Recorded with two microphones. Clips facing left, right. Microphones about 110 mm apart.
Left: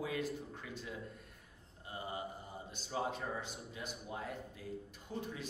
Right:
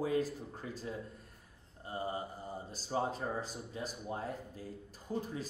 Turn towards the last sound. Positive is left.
turn(degrees=-35)  # may be behind; listen again after turning